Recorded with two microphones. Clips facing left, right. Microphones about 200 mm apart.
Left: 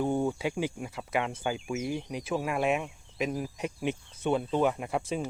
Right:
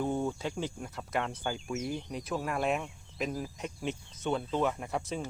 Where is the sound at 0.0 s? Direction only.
15° left (ahead or behind).